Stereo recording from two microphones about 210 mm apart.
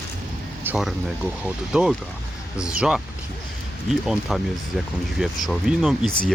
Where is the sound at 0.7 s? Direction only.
Centre (ahead or behind).